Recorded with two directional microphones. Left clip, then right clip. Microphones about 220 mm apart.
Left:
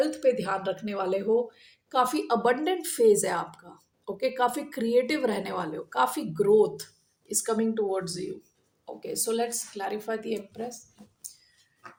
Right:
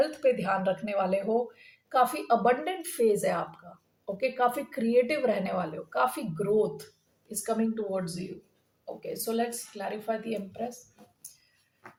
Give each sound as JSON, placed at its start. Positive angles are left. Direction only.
{"t": 0.0, "sound": "speech", "side_deg": 45}